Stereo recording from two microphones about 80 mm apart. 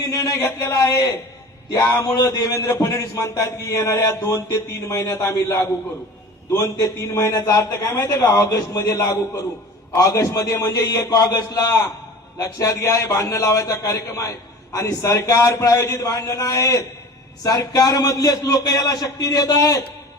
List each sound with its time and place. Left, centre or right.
0.1 s a sound: left
0.7 s a man's voice: left
7.3 s a man's voice: left
7.7 s a man's voice: left
12.4 s a man's voice: left